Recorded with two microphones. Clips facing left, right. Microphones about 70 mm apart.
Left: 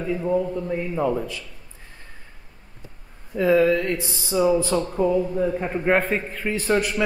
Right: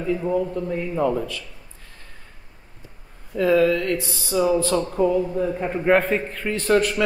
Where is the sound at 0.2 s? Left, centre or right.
Centre.